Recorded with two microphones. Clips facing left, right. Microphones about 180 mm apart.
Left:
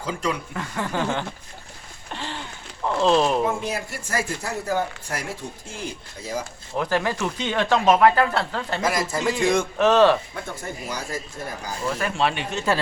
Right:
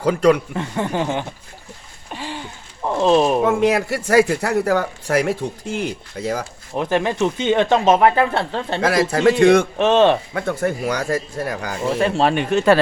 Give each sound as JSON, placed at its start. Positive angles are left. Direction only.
{"t": 0.0, "sound": "speech", "side_deg": -65}
{"t": 0.5, "sound": "speech", "side_deg": -25}
{"t": 2.1, "sound": "a sound", "side_deg": -10}
{"t": 2.8, "sound": "speech", "side_deg": -15}
{"t": 3.4, "sound": "speech", "side_deg": -75}
{"t": 6.2, "sound": "speech", "side_deg": -90}
{"t": 6.7, "sound": "speech", "side_deg": -20}
{"t": 8.8, "sound": "speech", "side_deg": -70}
{"t": 9.7, "sound": "speech", "side_deg": -25}
{"t": 10.3, "sound": "speech", "side_deg": -70}
{"t": 11.9, "sound": "speech", "side_deg": -30}
{"t": 12.2, "sound": "speech", "side_deg": -50}